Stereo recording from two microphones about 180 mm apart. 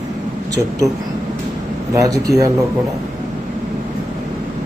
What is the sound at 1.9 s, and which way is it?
Speech, 20° right (ahead or behind).